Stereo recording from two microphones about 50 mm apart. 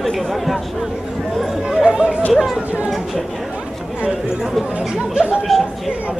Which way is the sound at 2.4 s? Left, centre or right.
Centre.